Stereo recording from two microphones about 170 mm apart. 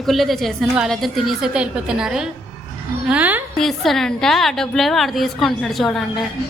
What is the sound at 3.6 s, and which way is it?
A woman's voice, centre (ahead or behind).